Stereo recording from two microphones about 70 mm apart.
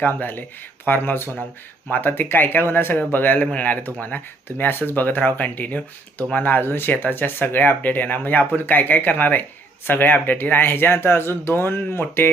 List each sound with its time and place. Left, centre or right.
0.0 s speech: left